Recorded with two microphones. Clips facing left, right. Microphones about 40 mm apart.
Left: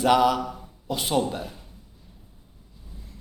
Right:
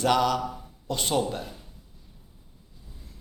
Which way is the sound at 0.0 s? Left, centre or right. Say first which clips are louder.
Left 3 dB; centre.